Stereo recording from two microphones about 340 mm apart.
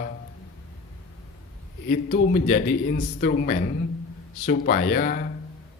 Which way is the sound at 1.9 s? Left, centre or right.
Left.